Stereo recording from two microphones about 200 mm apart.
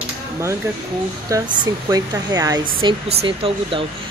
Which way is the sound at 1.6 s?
20° right (ahead or behind).